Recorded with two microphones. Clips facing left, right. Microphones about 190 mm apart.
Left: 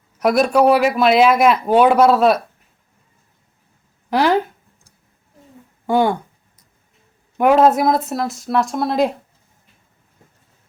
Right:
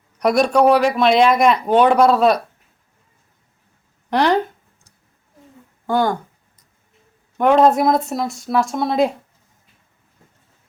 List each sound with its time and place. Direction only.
0.2 s speech: centre (ahead or behind)
4.1 s a sound: 5° left (ahead or behind)
5.8 s speech: 10° left (ahead or behind)
7.3 s speech: 5° left (ahead or behind)